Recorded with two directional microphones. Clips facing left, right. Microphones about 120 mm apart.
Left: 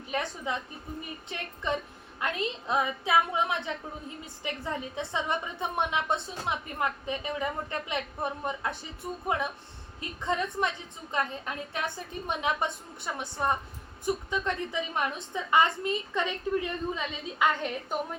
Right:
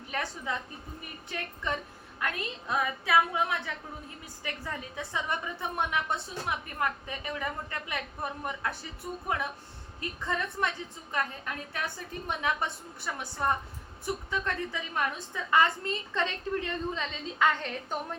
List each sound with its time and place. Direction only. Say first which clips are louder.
0.1 s a woman's voice: left 2 dB; 20° left (ahead or behind)